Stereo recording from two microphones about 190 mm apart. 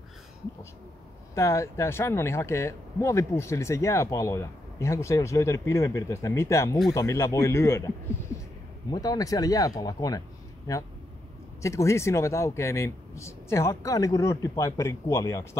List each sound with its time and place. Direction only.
1.3 s speech: 15° left (ahead or behind)